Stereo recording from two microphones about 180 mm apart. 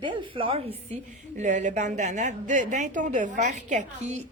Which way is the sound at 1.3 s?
45° right (ahead or behind).